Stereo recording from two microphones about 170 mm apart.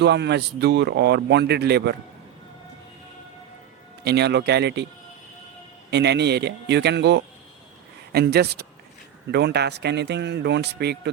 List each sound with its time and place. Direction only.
0.0 s speech: 80° right
4.0 s speech: 75° right (ahead or behind)
5.9 s speech: 80° right
8.1 s speech: 70° right (ahead or behind)